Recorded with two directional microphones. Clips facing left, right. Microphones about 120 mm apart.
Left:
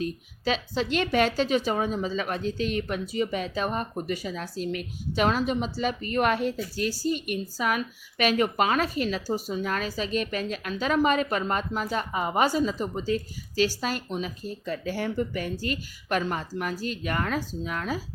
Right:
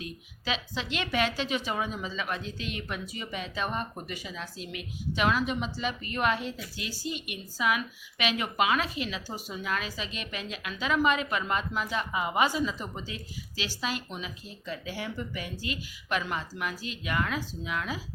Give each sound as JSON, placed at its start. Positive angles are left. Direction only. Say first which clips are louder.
{"t": 0.0, "sound": "a woman's voice", "louder": "left 9 dB", "side_deg": 40}